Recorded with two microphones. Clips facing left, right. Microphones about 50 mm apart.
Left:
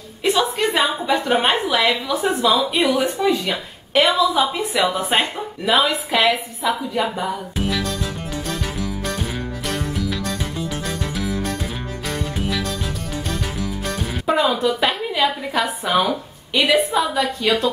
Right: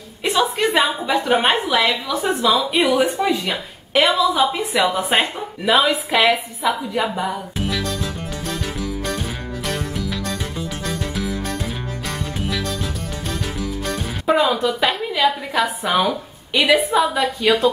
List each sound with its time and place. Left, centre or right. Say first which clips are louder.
0.2 s a woman's voice: even; centre
3.2 s speech: left 1 dB; centre
3.9 s a woman's voice: even; centre
14.2 s a woman's voice: right 1 dB; centre